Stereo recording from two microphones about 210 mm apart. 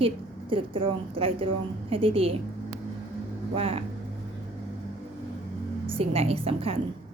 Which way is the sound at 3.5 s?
25° right (ahead or behind).